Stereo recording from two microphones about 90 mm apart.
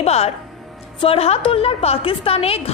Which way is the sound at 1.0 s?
90° left.